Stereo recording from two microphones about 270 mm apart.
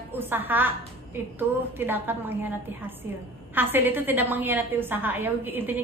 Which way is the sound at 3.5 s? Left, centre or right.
Centre.